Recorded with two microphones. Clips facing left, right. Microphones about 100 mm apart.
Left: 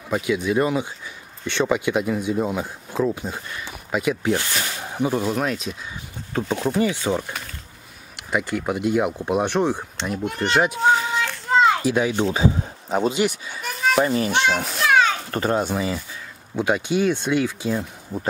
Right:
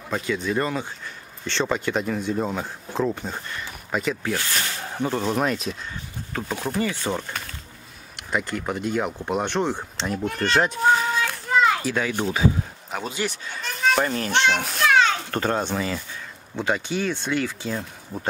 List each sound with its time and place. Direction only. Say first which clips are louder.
0.1 s speech: left 4 dB; 10° left (ahead or behind)
4.6 s a sound: left 2 dB; 10° left (ahead or behind)
5.3 s speech: even; centre (ahead or behind)
6.8 s speech: left 2 dB; 15° left (ahead or behind)
11.5 s a child's voice: left 3 dB; 20° left (ahead or behind)
13.2 s a child's voice: left 5 dB; 10° left (ahead or behind)